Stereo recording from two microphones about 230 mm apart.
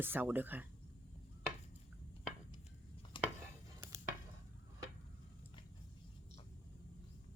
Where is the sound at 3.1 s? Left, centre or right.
Left.